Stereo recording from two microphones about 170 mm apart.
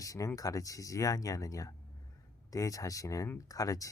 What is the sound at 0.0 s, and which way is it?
Speech, 20° left (ahead or behind).